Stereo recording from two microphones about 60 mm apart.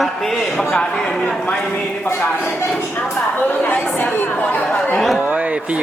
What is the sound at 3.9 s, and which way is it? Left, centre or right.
Chatter, left.